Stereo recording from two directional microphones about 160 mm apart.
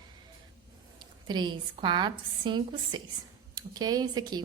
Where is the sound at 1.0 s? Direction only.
25° right (ahead or behind).